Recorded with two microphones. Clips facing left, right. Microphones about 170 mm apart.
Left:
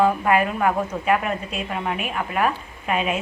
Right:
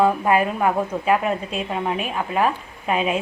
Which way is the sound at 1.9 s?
30° right (ahead or behind).